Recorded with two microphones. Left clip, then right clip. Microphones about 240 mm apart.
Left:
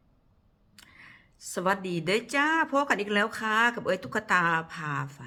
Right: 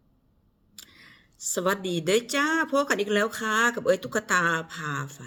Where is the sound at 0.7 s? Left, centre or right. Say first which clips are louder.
Right 2 dB; centre.